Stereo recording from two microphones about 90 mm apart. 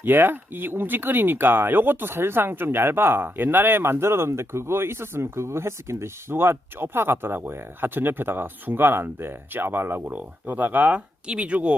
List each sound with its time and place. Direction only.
0.0 s speech: 25° right (ahead or behind)